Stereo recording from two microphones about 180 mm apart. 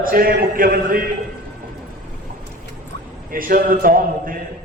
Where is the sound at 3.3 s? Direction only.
50° right (ahead or behind).